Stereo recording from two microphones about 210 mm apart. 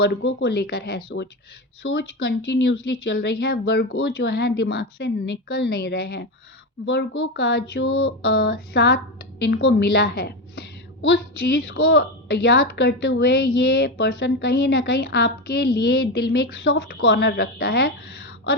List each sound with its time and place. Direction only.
0.0 s a woman's voice: 55° left (ahead or behind)